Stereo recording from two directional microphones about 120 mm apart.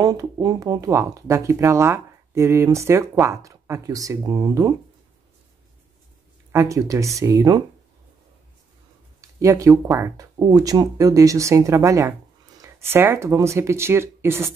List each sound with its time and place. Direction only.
0.0 s speech: 30° right (ahead or behind)
6.5 s speech: 25° right (ahead or behind)
9.2 s speech: 25° right (ahead or behind)